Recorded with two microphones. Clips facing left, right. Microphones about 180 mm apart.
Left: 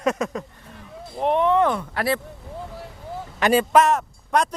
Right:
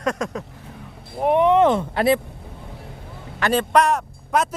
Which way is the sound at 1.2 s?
15° right (ahead or behind).